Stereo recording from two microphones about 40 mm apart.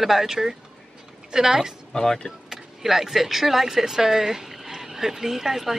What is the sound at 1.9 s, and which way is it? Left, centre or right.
Speech, centre.